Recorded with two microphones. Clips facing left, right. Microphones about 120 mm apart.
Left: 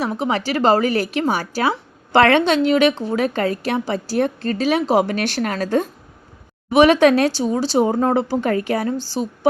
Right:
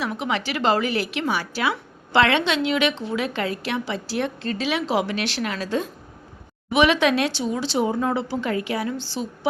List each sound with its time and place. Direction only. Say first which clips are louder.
0.0 s a woman's voice: left 5 dB; 40° left (ahead or behind)